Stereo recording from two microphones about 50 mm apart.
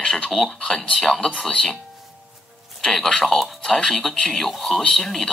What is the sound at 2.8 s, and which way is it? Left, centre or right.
Speech, centre.